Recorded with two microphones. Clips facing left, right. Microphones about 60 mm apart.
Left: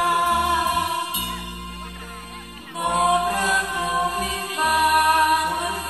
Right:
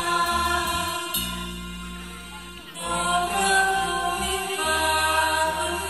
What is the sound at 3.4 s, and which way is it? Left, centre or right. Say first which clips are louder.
Music: right 1 dB; left.